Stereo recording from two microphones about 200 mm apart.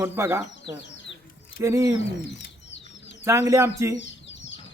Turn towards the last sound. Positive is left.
turn(degrees=65)  # may be behind; listen again after turning